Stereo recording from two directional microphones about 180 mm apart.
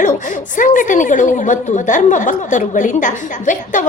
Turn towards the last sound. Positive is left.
turn(degrees=45)  # may be behind; listen again after turning